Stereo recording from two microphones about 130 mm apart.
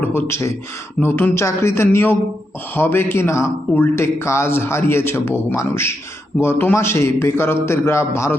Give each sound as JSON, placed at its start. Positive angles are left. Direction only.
{"t": 0.1, "sound": "speech", "side_deg": 20}